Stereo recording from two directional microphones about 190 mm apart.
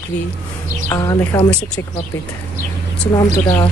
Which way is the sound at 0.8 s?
20° left (ahead or behind).